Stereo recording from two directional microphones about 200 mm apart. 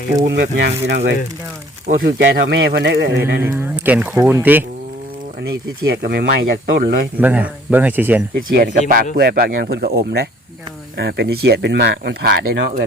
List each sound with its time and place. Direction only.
0.3 s speech: 60° right (ahead or behind)
3.4 s speech: 10° right (ahead or behind)
5.4 s speech: 55° right (ahead or behind)
7.2 s speech: 10° right (ahead or behind)
8.4 s speech: 45° right (ahead or behind)